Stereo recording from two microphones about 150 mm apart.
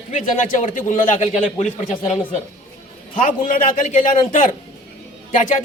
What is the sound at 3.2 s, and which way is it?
A man's voice, 60° left (ahead or behind).